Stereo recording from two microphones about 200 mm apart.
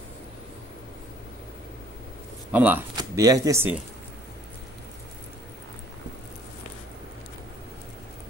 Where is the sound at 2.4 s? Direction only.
10° right (ahead or behind).